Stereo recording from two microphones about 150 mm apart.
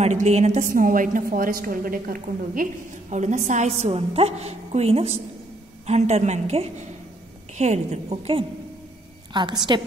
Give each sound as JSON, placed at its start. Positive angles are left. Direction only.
{"t": 0.0, "sound": "a woman's voice", "side_deg": -50}
{"t": 9.3, "sound": "a woman's voice", "side_deg": -30}